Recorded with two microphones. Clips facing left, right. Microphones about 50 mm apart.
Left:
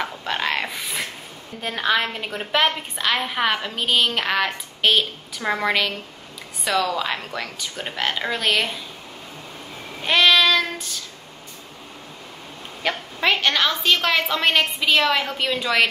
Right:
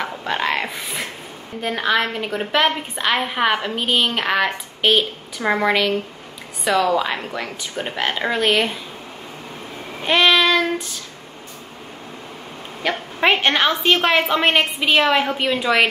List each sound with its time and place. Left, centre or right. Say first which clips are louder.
0.2 s a woman's voice: right 4 dB; centre
10.0 s child singing: right 1 dB; centre
12.8 s a woman's voice: right 2 dB; centre
13.2 s a woman's voice: right 3 dB; right